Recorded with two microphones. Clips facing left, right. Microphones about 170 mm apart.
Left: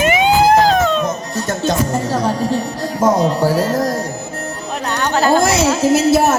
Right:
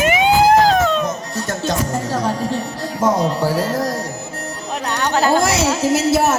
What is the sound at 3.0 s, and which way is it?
Speech, 45° left (ahead or behind).